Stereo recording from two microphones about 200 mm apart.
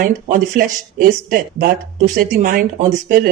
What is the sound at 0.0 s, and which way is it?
Speech, 40° right (ahead or behind).